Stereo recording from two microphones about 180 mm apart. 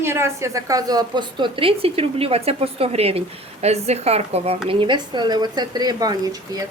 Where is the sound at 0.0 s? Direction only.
15° right (ahead or behind).